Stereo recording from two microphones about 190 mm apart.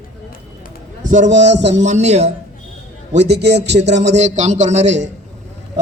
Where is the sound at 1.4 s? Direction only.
65° right (ahead or behind).